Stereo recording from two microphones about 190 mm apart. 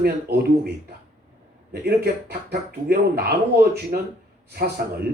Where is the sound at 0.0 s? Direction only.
55° right (ahead or behind).